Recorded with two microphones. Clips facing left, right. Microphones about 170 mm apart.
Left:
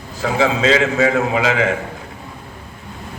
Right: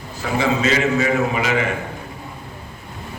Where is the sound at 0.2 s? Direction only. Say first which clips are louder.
Left 3 dB; 90° left.